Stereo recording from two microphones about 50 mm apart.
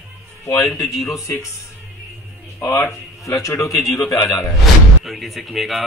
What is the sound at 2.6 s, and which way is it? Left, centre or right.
Speech, left.